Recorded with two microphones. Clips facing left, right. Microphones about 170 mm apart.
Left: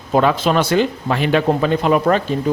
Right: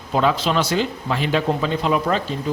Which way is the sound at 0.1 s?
55° left (ahead or behind).